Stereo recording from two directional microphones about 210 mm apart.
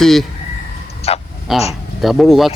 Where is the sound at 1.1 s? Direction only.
30° left (ahead or behind).